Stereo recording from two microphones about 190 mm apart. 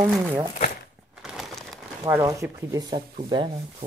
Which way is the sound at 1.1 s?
Centre (ahead or behind).